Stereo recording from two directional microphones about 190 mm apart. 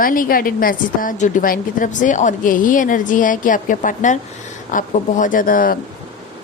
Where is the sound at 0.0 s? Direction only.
45° left (ahead or behind).